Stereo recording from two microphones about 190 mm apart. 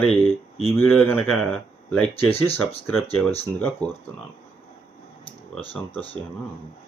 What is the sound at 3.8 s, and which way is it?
Speech, 5° left (ahead or behind).